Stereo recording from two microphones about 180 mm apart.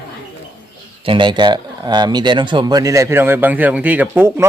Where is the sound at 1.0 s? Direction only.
25° right (ahead or behind).